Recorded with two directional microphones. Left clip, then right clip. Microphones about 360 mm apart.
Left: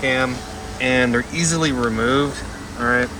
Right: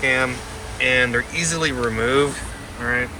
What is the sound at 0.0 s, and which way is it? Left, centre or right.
Speech, centre.